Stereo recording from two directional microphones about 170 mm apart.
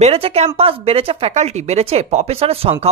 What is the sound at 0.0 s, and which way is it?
Speech, 35° right (ahead or behind).